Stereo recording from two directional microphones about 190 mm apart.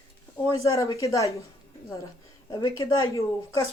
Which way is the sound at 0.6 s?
15° left (ahead or behind).